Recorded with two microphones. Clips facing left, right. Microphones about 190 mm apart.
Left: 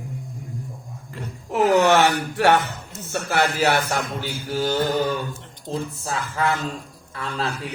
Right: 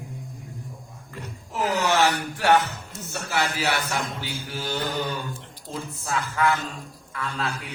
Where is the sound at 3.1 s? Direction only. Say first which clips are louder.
Left 5 dB; 60° left (ahead or behind).